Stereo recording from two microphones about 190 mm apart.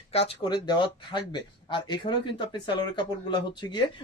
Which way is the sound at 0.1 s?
30° left (ahead or behind).